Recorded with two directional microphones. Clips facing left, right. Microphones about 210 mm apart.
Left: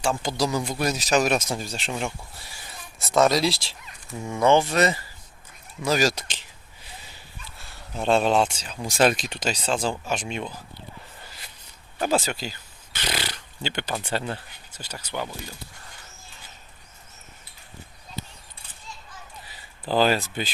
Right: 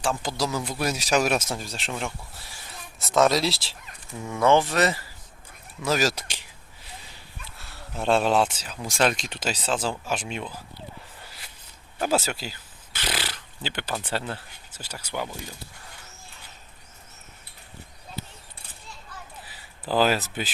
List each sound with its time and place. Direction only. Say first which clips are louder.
0.0 s speech: left 2 dB; centre (ahead or behind)
3.0 s speech: left 1 dB; centre (ahead or behind)
4.2 s speech: left 1 dB; 15° left (ahead or behind)
4.4 s speech: left 1 dB; centre (ahead or behind)
7.6 s speech: left 1 dB; centre (ahead or behind)
12.0 s speech: left 1 dB; 5° right (ahead or behind)
19.8 s speech: left 1 dB; 5° right (ahead or behind)